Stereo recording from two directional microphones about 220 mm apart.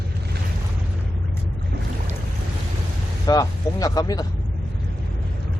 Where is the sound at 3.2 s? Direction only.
15° left (ahead or behind).